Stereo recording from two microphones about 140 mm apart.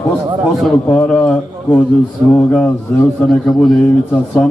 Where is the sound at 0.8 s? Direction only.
10° left (ahead or behind).